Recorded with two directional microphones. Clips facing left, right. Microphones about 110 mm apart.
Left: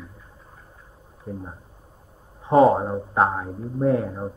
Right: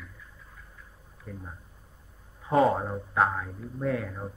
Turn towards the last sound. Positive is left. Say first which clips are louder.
# left 8 dB
turn(degrees=30)  # may be behind; listen again after turning